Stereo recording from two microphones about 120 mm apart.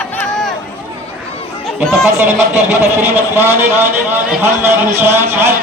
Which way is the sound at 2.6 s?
20° right (ahead or behind).